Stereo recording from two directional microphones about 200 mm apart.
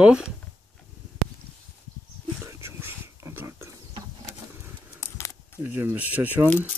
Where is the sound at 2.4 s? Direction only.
15° right (ahead or behind).